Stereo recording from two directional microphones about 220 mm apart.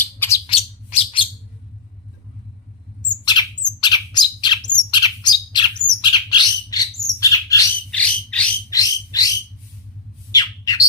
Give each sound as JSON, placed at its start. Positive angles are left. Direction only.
{"t": 0.0, "sound": "bird", "side_deg": 10}
{"t": 0.4, "sound": "bird", "side_deg": 25}
{"t": 3.1, "sound": "bird", "side_deg": 20}
{"t": 7.9, "sound": "a sound", "side_deg": 5}
{"t": 10.3, "sound": "bird", "side_deg": 15}